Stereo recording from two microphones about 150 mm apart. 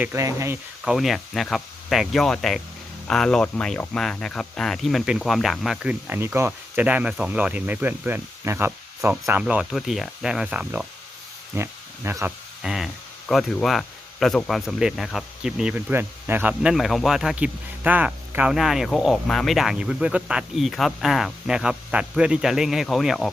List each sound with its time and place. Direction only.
0.0 s speech: 20° right (ahead or behind)
0.9 s speech: centre (ahead or behind); by 12.3 s 15° right (ahead or behind)
12.6 s speech: centre (ahead or behind)